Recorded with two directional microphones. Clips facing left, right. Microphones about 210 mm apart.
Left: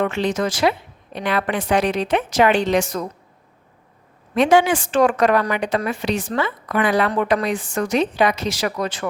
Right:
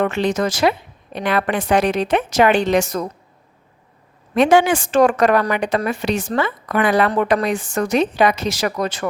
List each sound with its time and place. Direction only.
0.0 s a woman's voice: 45° right (ahead or behind)
4.4 s a woman's voice: 50° right (ahead or behind)
7.1 s a woman's voice: 40° right (ahead or behind)